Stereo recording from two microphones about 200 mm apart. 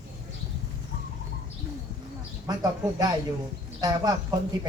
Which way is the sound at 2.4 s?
20° right (ahead or behind).